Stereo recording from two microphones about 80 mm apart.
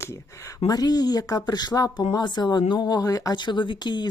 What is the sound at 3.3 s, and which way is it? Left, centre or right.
Speech, left.